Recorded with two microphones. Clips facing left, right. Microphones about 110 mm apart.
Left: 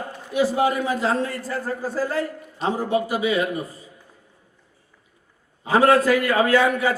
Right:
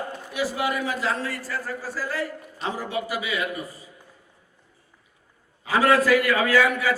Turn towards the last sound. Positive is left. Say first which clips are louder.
# left 2 dB
turn(degrees=30)  # may be behind; listen again after turning